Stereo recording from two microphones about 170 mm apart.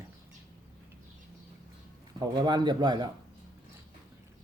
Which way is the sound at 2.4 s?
25° right (ahead or behind).